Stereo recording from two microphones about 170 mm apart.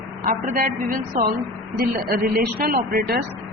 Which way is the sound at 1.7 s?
65° right (ahead or behind).